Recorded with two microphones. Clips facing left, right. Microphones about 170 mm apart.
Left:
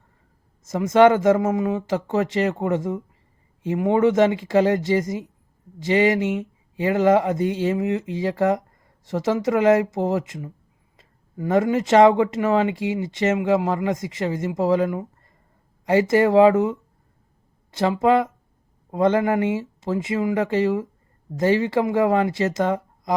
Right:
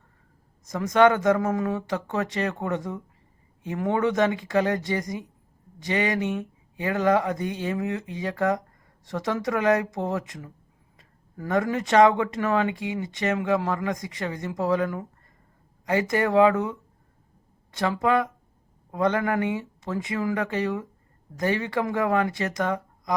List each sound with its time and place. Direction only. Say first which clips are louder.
0.6 s speech: left 4 dB; 25° left (ahead or behind)